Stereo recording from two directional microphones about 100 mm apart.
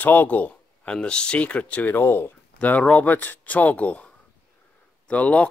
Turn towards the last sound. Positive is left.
turn(degrees=15)  # may be behind; listen again after turning